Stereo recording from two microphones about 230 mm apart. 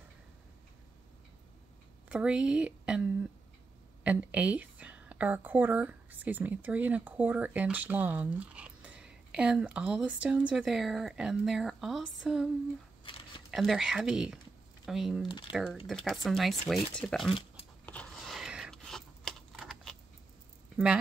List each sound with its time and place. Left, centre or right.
2.0 s a woman's voice: centre
13.1 s a sound: left
13.5 s a woman's voice: centre
15.2 s speech: left
15.5 s a woman's voice: centre
17.8 s computer keyboard: centre
20.7 s speech: centre